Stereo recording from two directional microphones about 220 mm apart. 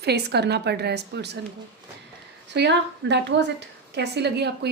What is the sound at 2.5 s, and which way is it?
A woman's voice, 50° right (ahead or behind).